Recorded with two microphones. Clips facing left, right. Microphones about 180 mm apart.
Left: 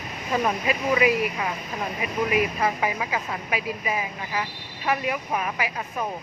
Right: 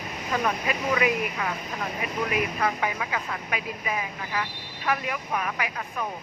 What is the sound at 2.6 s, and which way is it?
Speech, 15° left (ahead or behind).